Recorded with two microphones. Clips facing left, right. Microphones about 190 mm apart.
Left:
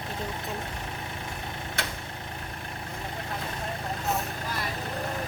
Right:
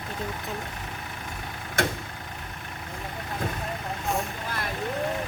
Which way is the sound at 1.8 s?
50° right (ahead or behind).